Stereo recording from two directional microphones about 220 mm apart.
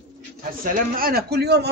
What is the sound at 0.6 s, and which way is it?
A man's voice, 40° right (ahead or behind).